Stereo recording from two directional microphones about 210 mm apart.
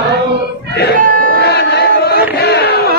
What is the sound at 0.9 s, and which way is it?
Crowd, 45° right (ahead or behind).